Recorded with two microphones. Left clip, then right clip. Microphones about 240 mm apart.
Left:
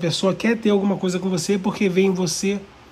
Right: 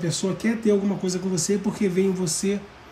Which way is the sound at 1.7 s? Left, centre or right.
Centre.